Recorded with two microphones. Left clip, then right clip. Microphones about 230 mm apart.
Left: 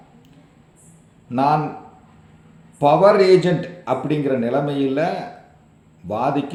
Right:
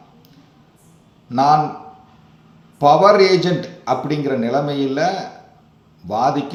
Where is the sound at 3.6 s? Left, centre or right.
Left.